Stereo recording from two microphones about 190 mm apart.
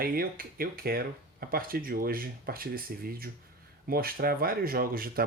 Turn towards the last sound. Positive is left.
turn(degrees=-50)  # may be behind; listen again after turning